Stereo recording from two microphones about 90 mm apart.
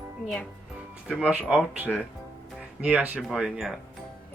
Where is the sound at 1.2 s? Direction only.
15° right (ahead or behind).